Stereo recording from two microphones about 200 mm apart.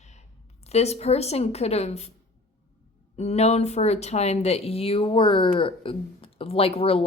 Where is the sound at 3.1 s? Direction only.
30° left (ahead or behind).